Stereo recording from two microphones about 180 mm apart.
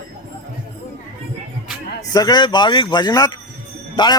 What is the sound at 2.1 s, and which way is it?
A man's voice, 20° left (ahead or behind).